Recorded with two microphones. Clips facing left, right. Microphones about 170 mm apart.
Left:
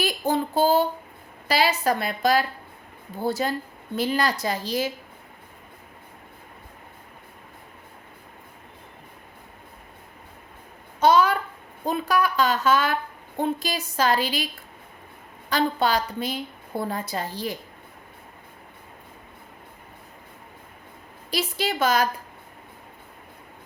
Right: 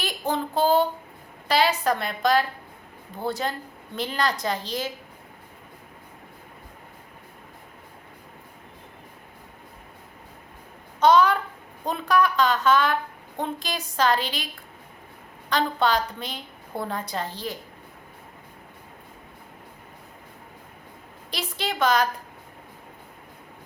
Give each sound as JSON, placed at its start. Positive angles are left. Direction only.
{"t": 0.0, "sound": "a sound", "side_deg": 5}
{"t": 1.5, "sound": "a woman's voice", "side_deg": 5}
{"t": 11.0, "sound": "a sound", "side_deg": 5}
{"t": 11.9, "sound": "a woman's voice", "side_deg": 5}
{"t": 15.4, "sound": "a woman's voice", "side_deg": 5}
{"t": 21.2, "sound": "a woman's voice", "side_deg": 5}